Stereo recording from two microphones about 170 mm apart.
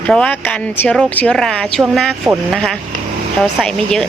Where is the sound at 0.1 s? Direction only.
10° left (ahead or behind).